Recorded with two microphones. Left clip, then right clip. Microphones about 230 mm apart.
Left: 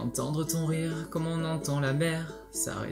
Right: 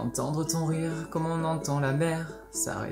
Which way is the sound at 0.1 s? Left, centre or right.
Centre.